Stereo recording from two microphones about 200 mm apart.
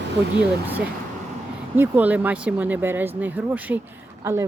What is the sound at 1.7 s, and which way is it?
Speech, 10° right (ahead or behind).